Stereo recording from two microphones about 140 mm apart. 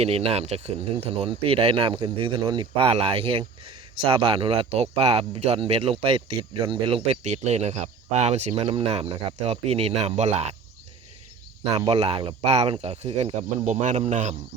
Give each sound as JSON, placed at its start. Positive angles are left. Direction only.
{"t": 0.0, "sound": "speech", "side_deg": -45}
{"t": 11.9, "sound": "speech", "side_deg": -40}
{"t": 13.7, "sound": "speech", "side_deg": -55}